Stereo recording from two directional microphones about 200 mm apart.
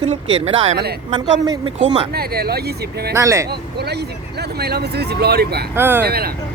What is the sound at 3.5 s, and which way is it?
Speech, 55° right (ahead or behind).